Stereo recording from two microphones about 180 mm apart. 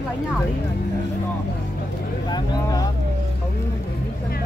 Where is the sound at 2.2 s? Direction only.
20° left (ahead or behind).